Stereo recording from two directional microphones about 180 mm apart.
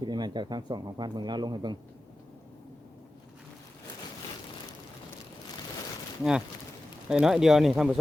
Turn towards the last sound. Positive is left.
turn(degrees=0)  # may be behind; listen again after turning